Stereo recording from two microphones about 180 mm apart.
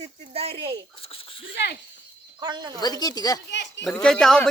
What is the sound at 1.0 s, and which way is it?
Speech, 30° left (ahead or behind).